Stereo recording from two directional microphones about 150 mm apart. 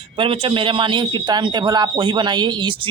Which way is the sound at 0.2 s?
35° right (ahead or behind).